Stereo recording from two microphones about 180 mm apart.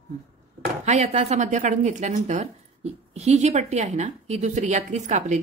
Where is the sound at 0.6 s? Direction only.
40° right (ahead or behind).